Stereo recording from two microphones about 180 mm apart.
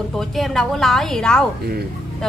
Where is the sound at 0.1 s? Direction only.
Centre (ahead or behind).